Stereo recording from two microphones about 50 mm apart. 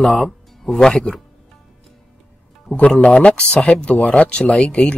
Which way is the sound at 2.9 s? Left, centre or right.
Centre.